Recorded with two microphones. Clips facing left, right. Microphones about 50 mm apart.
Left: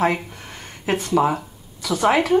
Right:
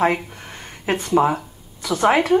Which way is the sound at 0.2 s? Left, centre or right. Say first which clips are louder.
Right 1 dB; centre.